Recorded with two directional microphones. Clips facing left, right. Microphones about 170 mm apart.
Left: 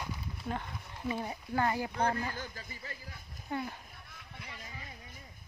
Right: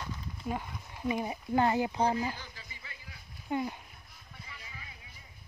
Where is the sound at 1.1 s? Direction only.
15° right (ahead or behind).